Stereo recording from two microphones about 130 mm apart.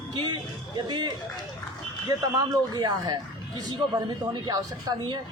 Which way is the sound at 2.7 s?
30° right (ahead or behind).